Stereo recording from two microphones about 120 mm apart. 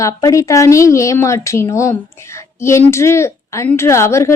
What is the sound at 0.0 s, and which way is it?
A woman's voice, 25° left (ahead or behind).